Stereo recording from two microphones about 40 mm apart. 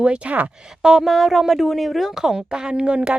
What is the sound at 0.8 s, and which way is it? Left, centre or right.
A woman's voice, centre.